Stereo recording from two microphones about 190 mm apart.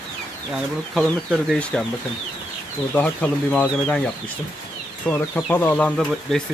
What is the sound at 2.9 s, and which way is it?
Speech, 5° left (ahead or behind).